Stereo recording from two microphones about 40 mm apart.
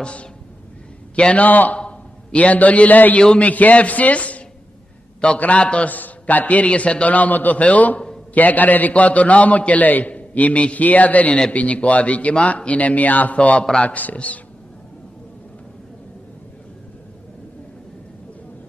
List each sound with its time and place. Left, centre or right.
0.0 s a man's voice: left
1.3 s a man's voice: left
1.8 s a sound: left
3.3 s a man's voice: left
5.9 s a man's voice: left